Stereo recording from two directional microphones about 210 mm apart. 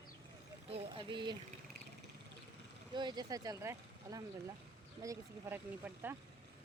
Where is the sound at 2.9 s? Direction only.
20° right (ahead or behind).